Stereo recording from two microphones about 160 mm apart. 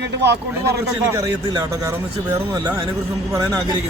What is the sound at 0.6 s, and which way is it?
A man's voice, 20° right (ahead or behind).